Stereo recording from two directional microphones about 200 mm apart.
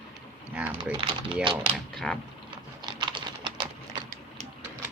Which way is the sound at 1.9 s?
5° left (ahead or behind).